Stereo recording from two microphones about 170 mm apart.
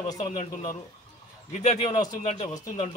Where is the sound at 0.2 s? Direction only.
50° left (ahead or behind).